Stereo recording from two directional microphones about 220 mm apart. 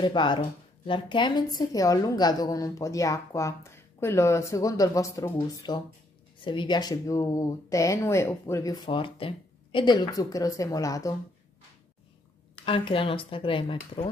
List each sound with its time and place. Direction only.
0.0 s a woman's voice: 20° left (ahead or behind)
12.6 s speech: 25° left (ahead or behind)